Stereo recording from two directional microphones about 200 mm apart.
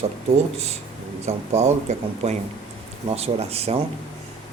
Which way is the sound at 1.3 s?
35° right (ahead or behind).